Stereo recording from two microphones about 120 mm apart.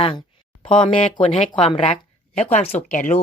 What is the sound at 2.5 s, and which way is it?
Speech, 65° left (ahead or behind).